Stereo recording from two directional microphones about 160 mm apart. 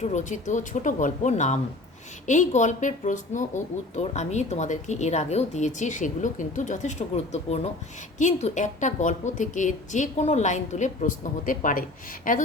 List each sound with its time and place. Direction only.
0.0 s speech: 50° left (ahead or behind)